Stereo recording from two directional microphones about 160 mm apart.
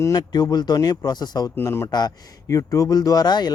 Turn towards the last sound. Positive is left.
turn(degrees=25)  # may be behind; listen again after turning